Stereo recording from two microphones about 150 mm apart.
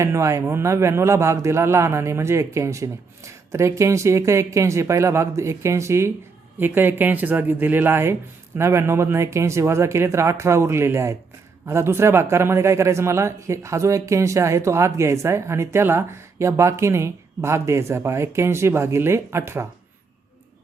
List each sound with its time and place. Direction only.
0.0 s a man's voice: 20° right (ahead or behind)